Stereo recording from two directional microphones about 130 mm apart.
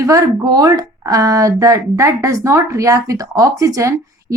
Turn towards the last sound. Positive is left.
turn(degrees=-25)  # may be behind; listen again after turning